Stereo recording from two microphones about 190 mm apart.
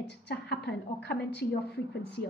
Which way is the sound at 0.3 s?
60° left (ahead or behind).